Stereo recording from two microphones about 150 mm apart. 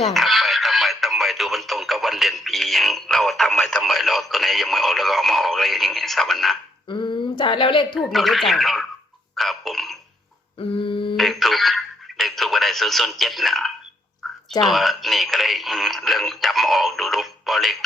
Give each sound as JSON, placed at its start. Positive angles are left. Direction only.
{"t": 0.1, "sound": "speech", "side_deg": 0}
{"t": 6.8, "sound": "a sound", "side_deg": 35}
{"t": 7.9, "sound": "speech", "side_deg": 0}
{"t": 9.3, "sound": "burping", "side_deg": 0}
{"t": 10.8, "sound": "a sound", "side_deg": 35}
{"t": 11.2, "sound": "radio", "side_deg": 0}
{"t": 14.6, "sound": "speech", "side_deg": 0}